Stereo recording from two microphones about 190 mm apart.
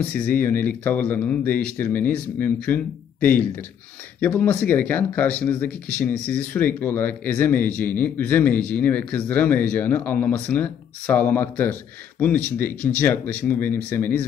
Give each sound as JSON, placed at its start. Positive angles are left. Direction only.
{"t": 0.3, "sound": "speech", "side_deg": 10}